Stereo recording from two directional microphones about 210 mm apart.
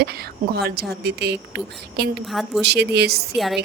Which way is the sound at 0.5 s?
50° right (ahead or behind).